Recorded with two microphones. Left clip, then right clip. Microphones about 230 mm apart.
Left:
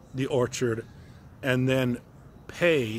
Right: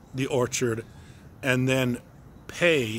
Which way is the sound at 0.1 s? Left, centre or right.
Centre.